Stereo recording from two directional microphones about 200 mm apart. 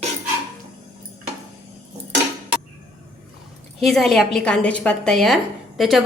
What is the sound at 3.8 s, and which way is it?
A woman's voice, centre (ahead or behind).